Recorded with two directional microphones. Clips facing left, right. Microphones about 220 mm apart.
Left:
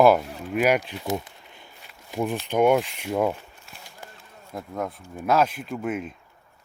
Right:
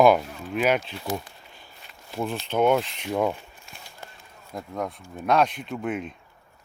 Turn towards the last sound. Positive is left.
turn(degrees=0)  # may be behind; listen again after turning